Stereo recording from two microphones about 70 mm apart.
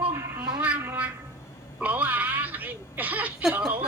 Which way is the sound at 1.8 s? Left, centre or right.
Right.